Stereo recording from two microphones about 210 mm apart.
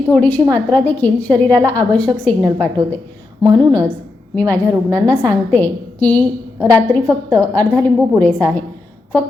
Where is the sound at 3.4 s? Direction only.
15° right (ahead or behind).